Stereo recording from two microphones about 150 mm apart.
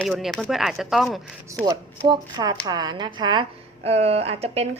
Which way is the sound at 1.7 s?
30° right (ahead or behind).